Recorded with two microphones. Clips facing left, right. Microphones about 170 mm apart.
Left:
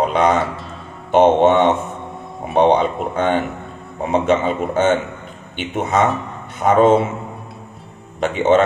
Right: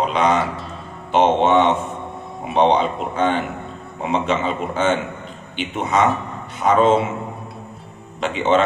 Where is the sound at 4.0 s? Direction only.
50° left (ahead or behind).